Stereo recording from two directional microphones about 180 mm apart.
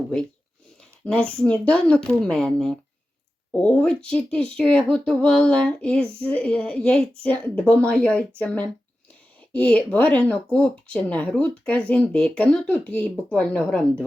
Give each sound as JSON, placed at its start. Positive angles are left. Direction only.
{"t": 1.0, "sound": "a woman's voice", "side_deg": 5}